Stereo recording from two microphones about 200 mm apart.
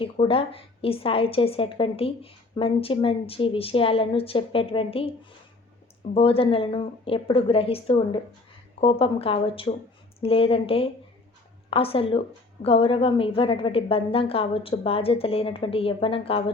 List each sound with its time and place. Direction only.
0.0 s a woman's voice: 25° left (ahead or behind)
6.1 s a woman's voice: 30° left (ahead or behind)